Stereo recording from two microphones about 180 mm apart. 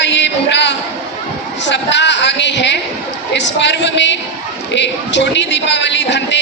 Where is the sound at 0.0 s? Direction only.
80° left.